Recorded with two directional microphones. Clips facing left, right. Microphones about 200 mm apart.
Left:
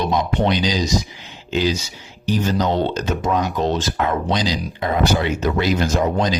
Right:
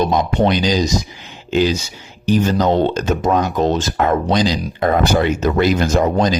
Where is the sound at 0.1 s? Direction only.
50° right (ahead or behind).